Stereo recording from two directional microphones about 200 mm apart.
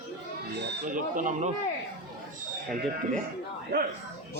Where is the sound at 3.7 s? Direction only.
50° right (ahead or behind).